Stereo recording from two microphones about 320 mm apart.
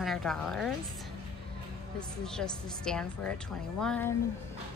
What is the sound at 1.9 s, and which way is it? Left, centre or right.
A woman's voice, centre.